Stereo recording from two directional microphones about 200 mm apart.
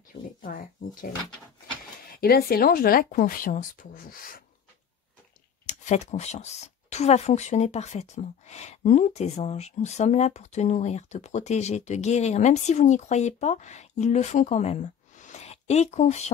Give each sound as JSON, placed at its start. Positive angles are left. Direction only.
{"t": 0.4, "sound": "speech", "side_deg": 45}
{"t": 2.0, "sound": "speech", "side_deg": 50}
{"t": 5.7, "sound": "speech", "side_deg": 35}